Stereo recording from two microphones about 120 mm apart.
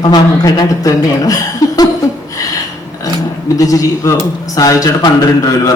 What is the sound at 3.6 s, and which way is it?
A man's voice, 30° left (ahead or behind).